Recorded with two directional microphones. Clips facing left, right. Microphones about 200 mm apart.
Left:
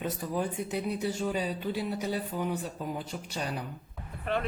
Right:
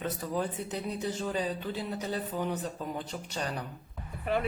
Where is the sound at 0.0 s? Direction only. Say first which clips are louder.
Left 1 dB; 10° left (ahead or behind).